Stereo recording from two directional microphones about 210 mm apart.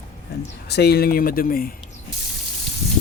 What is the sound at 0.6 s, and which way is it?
Speech, 50° left (ahead or behind).